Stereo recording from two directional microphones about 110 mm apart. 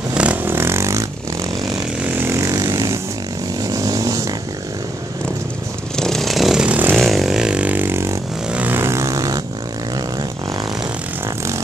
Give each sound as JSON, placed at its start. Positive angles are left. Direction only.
{"t": 0.1, "sound": "vehicle", "side_deg": -10}
{"t": 2.0, "sound": "vehicle", "side_deg": -20}
{"t": 3.6, "sound": "chainsaw", "side_deg": -35}
{"t": 5.9, "sound": "vehicle", "side_deg": 5}
{"t": 7.0, "sound": "vehicle", "side_deg": 0}